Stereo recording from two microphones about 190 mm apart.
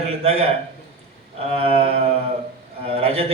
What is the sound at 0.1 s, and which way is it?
Speech, 30° right (ahead or behind).